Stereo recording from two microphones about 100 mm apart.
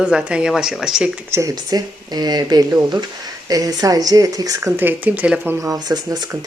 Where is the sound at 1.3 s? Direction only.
35° right (ahead or behind).